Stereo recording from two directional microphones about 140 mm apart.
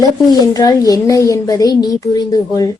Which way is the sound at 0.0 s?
25° left (ahead or behind).